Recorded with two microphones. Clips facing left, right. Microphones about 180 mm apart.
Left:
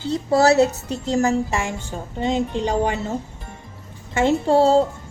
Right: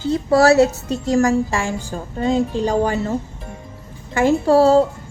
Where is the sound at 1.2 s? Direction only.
20° left (ahead or behind).